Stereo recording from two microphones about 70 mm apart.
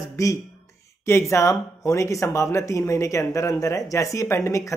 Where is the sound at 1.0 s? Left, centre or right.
Left.